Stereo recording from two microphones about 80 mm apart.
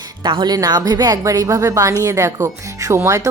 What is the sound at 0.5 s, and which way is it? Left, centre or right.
A woman's voice, right.